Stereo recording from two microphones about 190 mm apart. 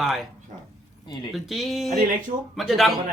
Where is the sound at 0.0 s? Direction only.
Centre (ahead or behind).